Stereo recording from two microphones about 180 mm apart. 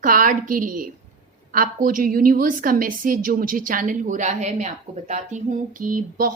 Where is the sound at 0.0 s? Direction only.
50° right (ahead or behind).